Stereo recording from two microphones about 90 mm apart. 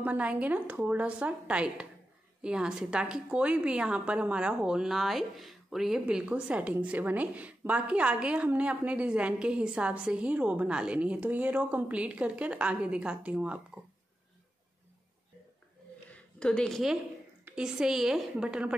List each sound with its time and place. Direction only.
0.0 s a woman's voice: 15° right (ahead or behind)
16.1 s a sound: 10° left (ahead or behind)
17.5 s a woman's voice: 10° right (ahead or behind)